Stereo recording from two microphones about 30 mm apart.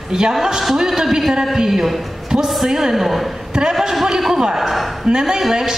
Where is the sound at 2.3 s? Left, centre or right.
Centre.